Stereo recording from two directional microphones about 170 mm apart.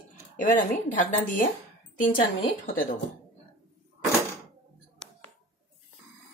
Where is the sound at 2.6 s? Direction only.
55° left (ahead or behind).